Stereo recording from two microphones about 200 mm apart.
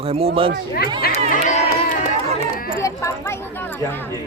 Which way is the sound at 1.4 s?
35° left (ahead or behind).